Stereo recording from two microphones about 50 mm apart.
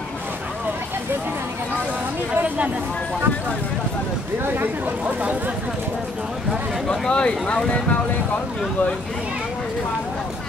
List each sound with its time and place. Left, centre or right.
2.3 s speech: right
6.9 s speech: centre